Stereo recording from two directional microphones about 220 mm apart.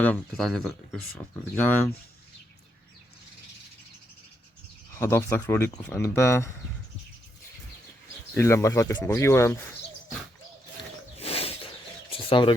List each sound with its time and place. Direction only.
0.0 s speech: 5° left (ahead or behind)
4.9 s speech: 10° left (ahead or behind)
8.4 s speech: 10° left (ahead or behind)
11.2 s a sound: 25° left (ahead or behind)
12.1 s bird: 20° left (ahead or behind)